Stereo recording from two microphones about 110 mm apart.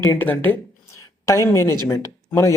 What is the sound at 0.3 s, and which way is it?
Speech, 15° left (ahead or behind).